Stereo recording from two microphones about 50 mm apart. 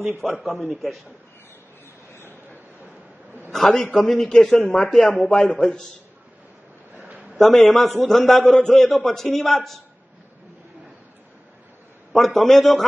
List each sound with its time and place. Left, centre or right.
0.4 s a man's voice: centre
3.5 s a man's voice: centre
7.0 s a sound: right
7.3 s a man's voice: centre
12.1 s a man's voice: centre